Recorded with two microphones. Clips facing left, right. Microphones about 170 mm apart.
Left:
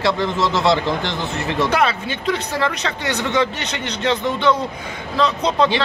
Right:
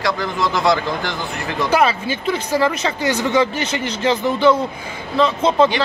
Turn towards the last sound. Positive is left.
turn(degrees=-5)  # may be behind; listen again after turning